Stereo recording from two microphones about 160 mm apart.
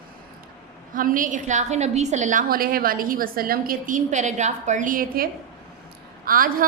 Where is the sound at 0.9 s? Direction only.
60° right (ahead or behind).